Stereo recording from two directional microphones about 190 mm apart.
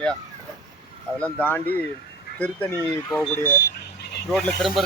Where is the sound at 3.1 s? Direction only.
10° left (ahead or behind).